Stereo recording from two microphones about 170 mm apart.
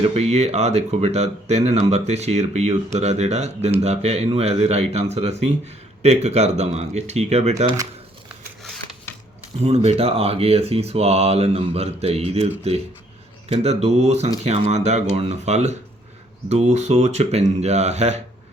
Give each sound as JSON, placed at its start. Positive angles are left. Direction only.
{"t": 0.1, "sound": "speech", "side_deg": -40}
{"t": 9.6, "sound": "speech", "side_deg": -40}